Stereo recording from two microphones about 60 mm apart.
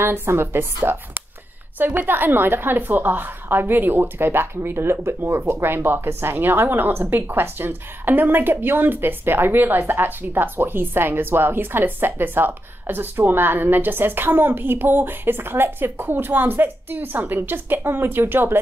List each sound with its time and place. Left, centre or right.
0.0 s a woman's voice: right
2.0 s a woman's voice: right